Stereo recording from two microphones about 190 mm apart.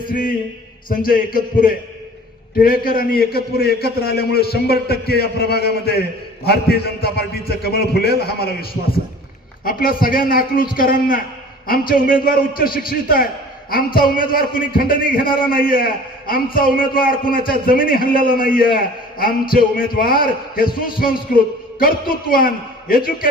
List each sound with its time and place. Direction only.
0.8 s a man's voice: 50° left (ahead or behind)
9.7 s a man's voice: 50° left (ahead or behind)